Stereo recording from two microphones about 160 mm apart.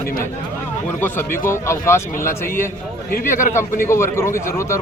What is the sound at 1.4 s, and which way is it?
A man's voice, 15° left (ahead or behind).